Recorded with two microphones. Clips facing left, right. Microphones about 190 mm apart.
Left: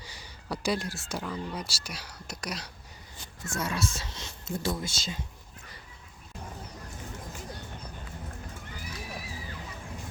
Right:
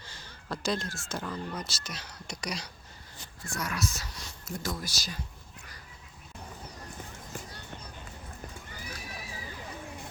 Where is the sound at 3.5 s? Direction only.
25° left (ahead or behind).